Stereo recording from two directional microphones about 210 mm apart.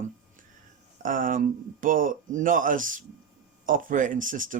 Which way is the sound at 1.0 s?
40° right (ahead or behind).